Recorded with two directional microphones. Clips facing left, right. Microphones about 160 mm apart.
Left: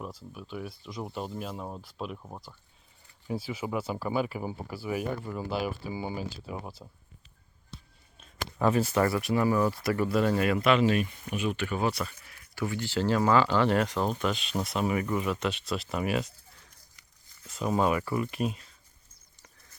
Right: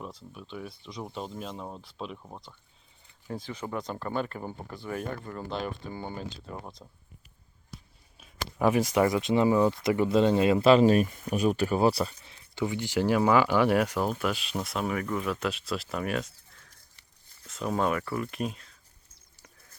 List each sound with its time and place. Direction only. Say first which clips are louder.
0.0 s speech: left 1 dB; 5° left (ahead or behind)
8.2 s speech: right 1 dB; 10° right (ahead or behind)